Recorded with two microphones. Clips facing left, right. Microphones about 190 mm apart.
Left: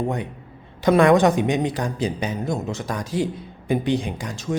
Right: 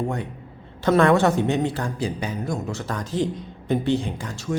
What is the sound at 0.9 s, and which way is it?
Speech, 15° left (ahead or behind).